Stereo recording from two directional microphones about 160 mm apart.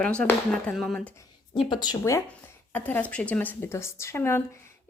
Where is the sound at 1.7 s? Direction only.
25° left (ahead or behind).